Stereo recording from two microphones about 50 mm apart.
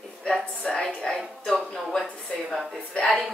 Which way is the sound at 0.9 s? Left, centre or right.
Centre.